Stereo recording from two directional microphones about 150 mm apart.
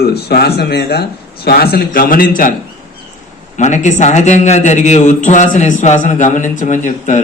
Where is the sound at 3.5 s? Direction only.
55° left (ahead or behind).